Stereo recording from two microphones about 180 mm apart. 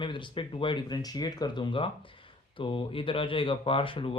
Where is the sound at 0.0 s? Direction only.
25° left (ahead or behind).